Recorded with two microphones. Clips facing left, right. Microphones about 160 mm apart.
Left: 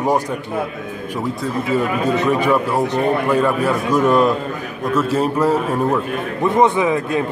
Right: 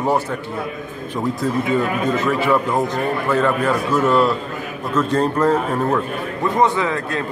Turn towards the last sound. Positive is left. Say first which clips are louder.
# left 4 dB
turn(degrees=15)  # may be behind; listen again after turning